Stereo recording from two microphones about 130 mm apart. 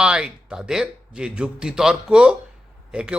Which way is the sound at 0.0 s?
5° right (ahead or behind).